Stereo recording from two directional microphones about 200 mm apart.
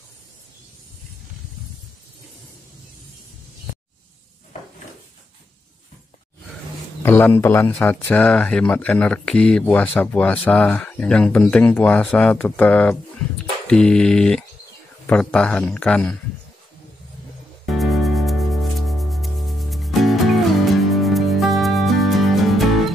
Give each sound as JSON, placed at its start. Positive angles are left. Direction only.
{"t": 7.0, "sound": "speech", "side_deg": 10}
{"t": 17.6, "sound": "music", "side_deg": 0}